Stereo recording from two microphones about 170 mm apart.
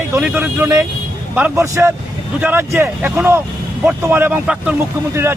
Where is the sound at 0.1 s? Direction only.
10° right (ahead or behind).